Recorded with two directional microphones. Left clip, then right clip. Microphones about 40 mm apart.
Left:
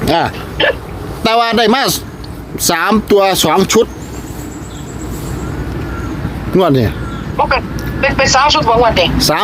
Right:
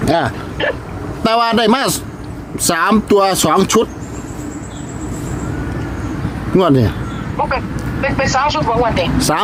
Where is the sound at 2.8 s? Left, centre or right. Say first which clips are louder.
Left 1 dB; centre.